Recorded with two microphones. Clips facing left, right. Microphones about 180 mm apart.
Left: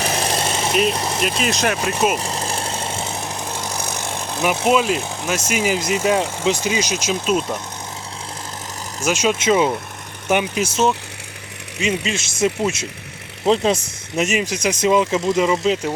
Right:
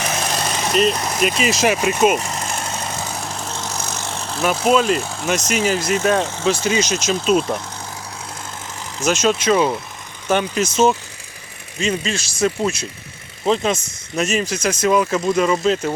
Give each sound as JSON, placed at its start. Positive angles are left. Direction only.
{"t": 0.0, "sound": "vehicle", "side_deg": 30}
{"t": 0.7, "sound": "speech", "side_deg": 5}
{"t": 0.9, "sound": "speech", "side_deg": 25}
{"t": 1.2, "sound": "speech", "side_deg": 0}
{"t": 2.1, "sound": "vehicle", "side_deg": 30}
{"t": 4.8, "sound": "speech", "side_deg": 5}
{"t": 9.0, "sound": "speech", "side_deg": 10}
{"t": 11.8, "sound": "speech", "side_deg": 15}
{"t": 14.2, "sound": "speech", "side_deg": 15}